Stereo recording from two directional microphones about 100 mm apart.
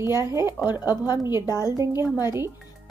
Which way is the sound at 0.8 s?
40° left (ahead or behind).